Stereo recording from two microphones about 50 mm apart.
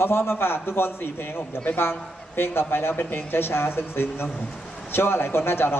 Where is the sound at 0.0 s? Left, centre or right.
Left.